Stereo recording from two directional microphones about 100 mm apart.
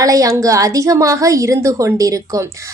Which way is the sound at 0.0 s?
35° right (ahead or behind).